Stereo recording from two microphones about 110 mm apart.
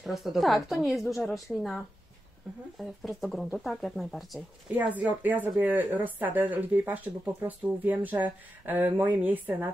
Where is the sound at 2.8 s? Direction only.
Centre (ahead or behind).